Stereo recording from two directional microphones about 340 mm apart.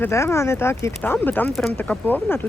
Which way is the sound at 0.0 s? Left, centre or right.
Centre.